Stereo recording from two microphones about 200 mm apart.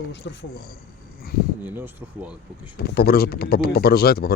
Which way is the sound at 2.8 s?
50° left (ahead or behind).